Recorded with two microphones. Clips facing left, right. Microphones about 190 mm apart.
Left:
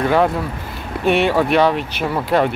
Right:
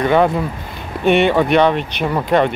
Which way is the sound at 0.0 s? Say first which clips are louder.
Right 2 dB; centre (ahead or behind).